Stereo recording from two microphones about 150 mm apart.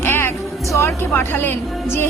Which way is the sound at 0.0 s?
15° left (ahead or behind).